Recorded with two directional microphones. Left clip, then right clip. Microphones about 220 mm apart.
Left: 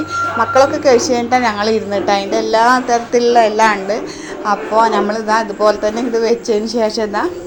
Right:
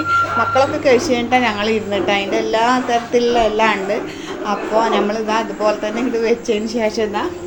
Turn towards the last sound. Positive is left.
turn(degrees=15)  # may be behind; listen again after turning